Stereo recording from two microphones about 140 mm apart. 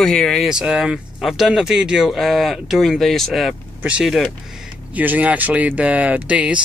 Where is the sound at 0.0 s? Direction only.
Centre (ahead or behind).